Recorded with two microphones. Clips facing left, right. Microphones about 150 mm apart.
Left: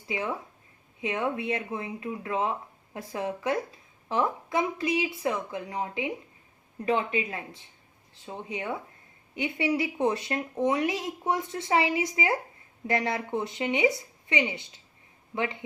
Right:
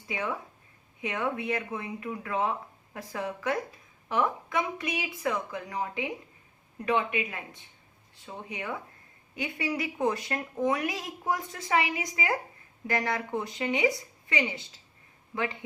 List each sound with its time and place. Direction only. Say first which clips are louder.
1.0 s a woman's voice: left 2 dB; 25° left (ahead or behind)